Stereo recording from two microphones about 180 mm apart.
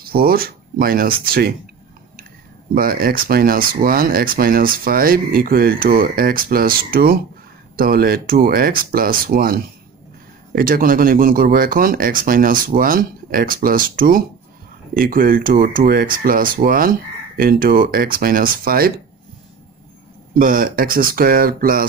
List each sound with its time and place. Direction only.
0.0 s speech: 55° right (ahead or behind)
2.7 s speech: 55° right (ahead or behind)
10.6 s speech: 50° right (ahead or behind)
20.3 s speech: 50° right (ahead or behind)